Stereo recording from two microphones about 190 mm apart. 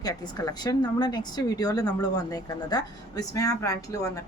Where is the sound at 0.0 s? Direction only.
20° left (ahead or behind).